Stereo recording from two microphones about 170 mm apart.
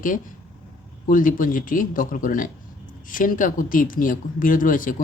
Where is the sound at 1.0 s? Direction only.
55° left (ahead or behind).